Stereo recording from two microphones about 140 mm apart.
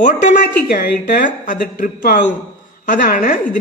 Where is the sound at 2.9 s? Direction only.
80° left.